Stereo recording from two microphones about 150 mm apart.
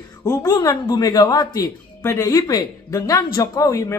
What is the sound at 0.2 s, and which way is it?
Speech, 25° left (ahead or behind).